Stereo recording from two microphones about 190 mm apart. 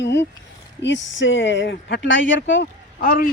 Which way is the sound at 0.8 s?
70° left (ahead or behind).